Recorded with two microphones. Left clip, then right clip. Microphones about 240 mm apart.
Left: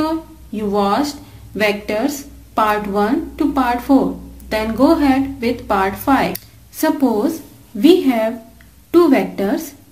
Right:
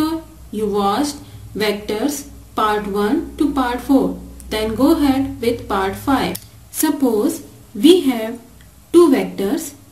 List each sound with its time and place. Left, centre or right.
0.6 s a woman's voice: centre